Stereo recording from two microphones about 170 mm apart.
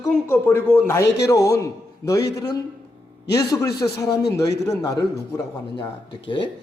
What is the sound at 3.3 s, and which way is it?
A man's voice, 20° left (ahead or behind).